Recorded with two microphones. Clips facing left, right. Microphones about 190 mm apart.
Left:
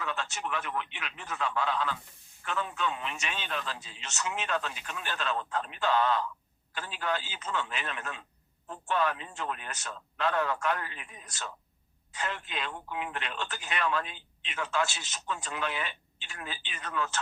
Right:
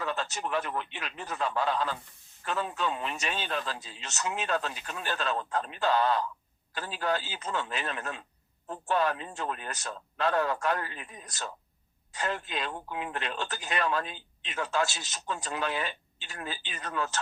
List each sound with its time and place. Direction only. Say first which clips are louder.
0.0 s speech: right 3 dB; 35° right (ahead or behind)